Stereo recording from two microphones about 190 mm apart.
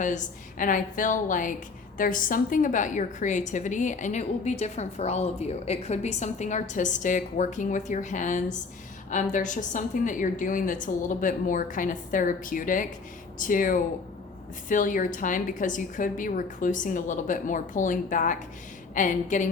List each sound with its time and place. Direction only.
0.0 s a woman's voice: 40° left (ahead or behind)